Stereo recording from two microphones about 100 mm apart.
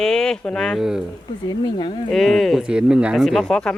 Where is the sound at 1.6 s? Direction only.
50° left (ahead or behind).